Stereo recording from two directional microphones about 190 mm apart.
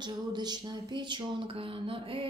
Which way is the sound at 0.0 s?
20° right (ahead or behind).